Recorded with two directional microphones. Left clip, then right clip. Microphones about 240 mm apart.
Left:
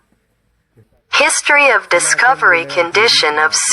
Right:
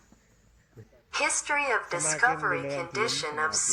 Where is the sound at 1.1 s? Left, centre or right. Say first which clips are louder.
Left 16 dB; left.